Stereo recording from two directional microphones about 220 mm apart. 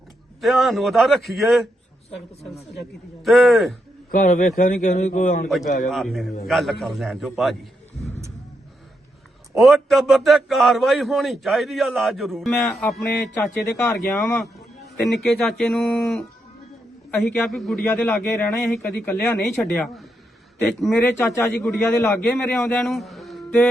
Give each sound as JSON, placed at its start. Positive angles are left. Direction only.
{"t": 0.4, "sound": "a man's voice", "side_deg": 0}
{"t": 3.2, "sound": "a man's voice", "side_deg": 0}
{"t": 4.1, "sound": "a man's voice", "side_deg": 40}
{"t": 5.9, "sound": "a man's voice", "side_deg": 0}
{"t": 9.6, "sound": "a man's voice", "side_deg": 0}